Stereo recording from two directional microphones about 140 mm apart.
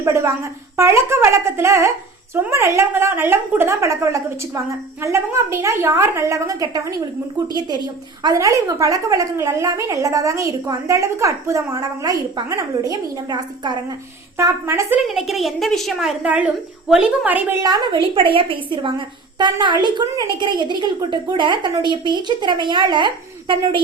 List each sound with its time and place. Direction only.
0.0 s a woman's voice: 20° right (ahead or behind)
8.2 s a woman's voice: 25° right (ahead or behind)
15.0 s a woman's voice: centre (ahead or behind)
17.6 s a woman's voice: 30° right (ahead or behind)